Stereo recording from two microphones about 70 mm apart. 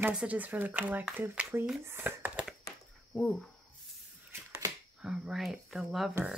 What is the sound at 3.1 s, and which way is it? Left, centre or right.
Speech, centre.